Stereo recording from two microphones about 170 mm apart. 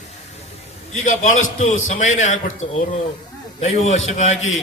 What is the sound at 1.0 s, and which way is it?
A man's voice, 50° left (ahead or behind).